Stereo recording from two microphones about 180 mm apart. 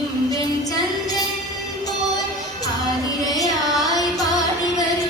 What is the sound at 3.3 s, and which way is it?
Carnatic music, 20° left (ahead or behind).